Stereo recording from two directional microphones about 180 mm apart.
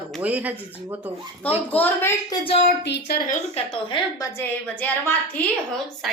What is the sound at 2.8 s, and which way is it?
Speech, 70° left (ahead or behind).